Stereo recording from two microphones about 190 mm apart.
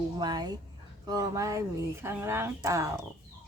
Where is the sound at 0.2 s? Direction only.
20° right (ahead or behind).